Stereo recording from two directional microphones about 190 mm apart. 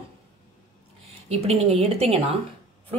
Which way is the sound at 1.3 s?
30° right (ahead or behind).